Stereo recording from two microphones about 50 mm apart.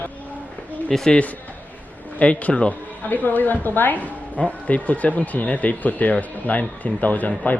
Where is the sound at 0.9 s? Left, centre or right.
Centre.